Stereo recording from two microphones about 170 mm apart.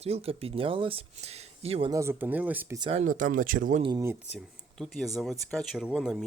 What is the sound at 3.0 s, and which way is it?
Speech, 50° right (ahead or behind).